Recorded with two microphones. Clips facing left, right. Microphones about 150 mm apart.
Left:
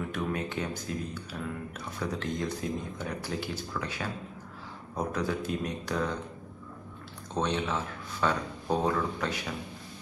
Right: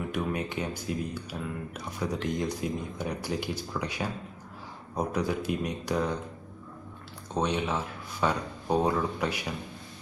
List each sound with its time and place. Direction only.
0.1 s speech: 15° right (ahead or behind)
7.3 s speech: 10° right (ahead or behind)